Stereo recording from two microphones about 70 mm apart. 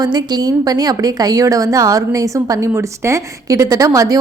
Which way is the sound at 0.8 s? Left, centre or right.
Right.